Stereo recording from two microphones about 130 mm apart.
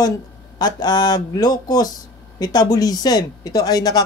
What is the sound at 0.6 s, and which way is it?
Speech, 30° left (ahead or behind).